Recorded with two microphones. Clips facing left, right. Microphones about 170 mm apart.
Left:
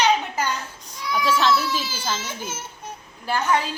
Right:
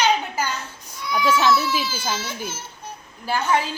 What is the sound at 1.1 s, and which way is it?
Speech, 10° right (ahead or behind).